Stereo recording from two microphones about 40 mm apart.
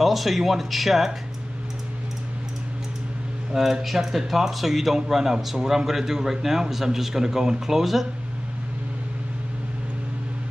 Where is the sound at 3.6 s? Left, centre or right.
Centre.